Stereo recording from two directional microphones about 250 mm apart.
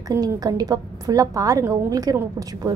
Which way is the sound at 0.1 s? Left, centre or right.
Centre.